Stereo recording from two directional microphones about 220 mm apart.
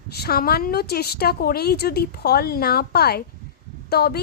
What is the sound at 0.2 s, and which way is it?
A woman's voice, 45° left (ahead or behind).